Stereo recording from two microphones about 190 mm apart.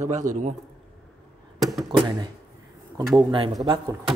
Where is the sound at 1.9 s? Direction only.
25° right (ahead or behind).